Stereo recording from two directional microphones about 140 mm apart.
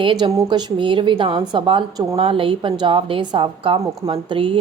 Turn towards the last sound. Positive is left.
turn(degrees=-40)  # may be behind; listen again after turning